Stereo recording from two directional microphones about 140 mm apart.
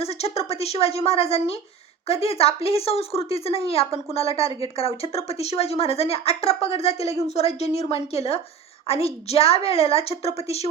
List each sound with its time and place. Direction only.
0.0 s a woman's voice: 45° left (ahead or behind)